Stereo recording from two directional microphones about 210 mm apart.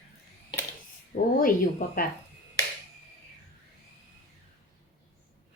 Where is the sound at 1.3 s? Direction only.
40° left (ahead or behind).